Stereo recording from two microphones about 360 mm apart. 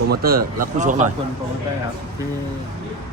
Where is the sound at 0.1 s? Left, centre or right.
Right.